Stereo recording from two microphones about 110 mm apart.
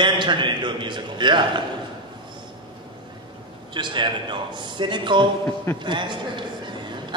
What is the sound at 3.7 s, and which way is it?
A man's voice, 45° right (ahead or behind).